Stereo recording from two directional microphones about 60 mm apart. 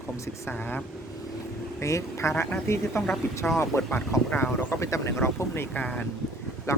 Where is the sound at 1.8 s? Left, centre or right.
Left.